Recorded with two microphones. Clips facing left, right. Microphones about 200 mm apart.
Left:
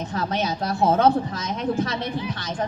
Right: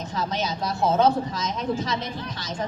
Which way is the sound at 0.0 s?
55° left (ahead or behind).